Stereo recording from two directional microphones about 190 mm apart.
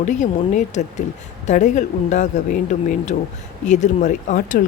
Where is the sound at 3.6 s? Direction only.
40° left (ahead or behind).